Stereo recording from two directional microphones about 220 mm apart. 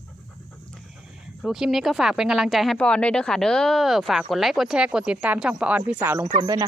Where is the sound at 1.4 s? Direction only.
Centre (ahead or behind).